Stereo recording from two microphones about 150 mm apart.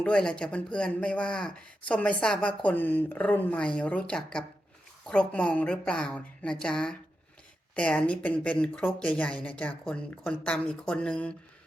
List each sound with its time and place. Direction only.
0.0 s speech: 5° left (ahead or behind)